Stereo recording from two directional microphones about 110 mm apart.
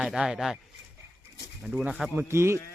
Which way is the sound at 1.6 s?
10° right (ahead or behind).